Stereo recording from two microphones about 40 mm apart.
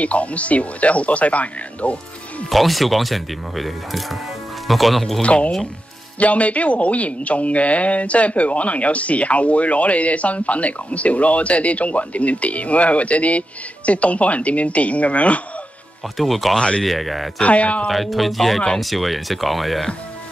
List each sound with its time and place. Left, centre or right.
0.0 s speech: left
2.5 s speech: centre
5.2 s speech: left
16.2 s speech: centre
16.5 s speech: left
16.8 s speech: centre
17.4 s speech: left
17.9 s speech: centre